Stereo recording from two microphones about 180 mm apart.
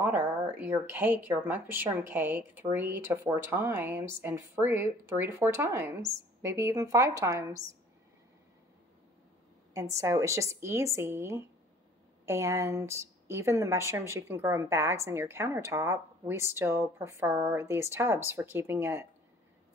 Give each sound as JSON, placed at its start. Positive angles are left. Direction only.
{"t": 0.0, "sound": "speech", "side_deg": -10}
{"t": 9.8, "sound": "speech", "side_deg": -15}